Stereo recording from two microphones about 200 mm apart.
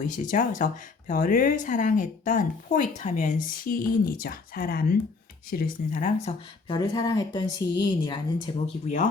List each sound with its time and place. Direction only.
0.0 s speech: 40° left (ahead or behind)
6.3 s speech: 35° left (ahead or behind)
6.7 s speech: 20° left (ahead or behind)